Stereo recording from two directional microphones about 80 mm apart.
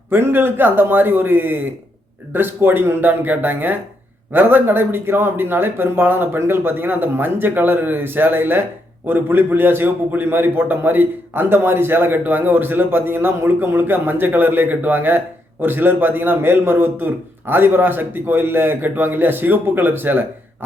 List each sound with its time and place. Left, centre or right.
0.1 s a man's voice: right